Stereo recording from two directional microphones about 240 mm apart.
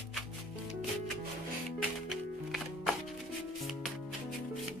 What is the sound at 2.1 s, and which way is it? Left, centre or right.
Music, centre.